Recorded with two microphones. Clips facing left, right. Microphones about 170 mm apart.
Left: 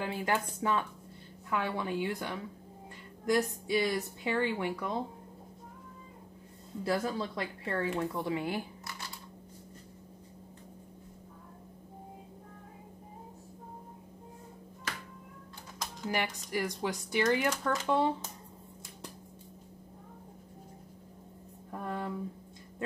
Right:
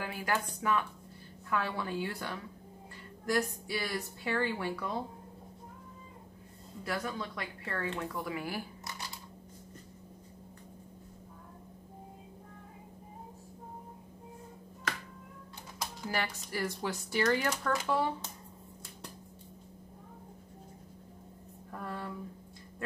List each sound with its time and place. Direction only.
0.0 s speech: 25° left (ahead or behind)
6.8 s speech: 30° left (ahead or behind)
16.1 s speech: 15° left (ahead or behind)
21.6 s a sound: 20° left (ahead or behind)